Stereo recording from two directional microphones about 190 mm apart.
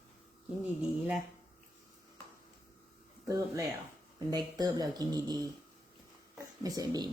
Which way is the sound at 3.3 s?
15° right (ahead or behind).